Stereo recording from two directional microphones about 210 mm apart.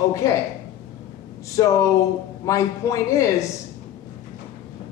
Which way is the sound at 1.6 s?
15° left (ahead or behind).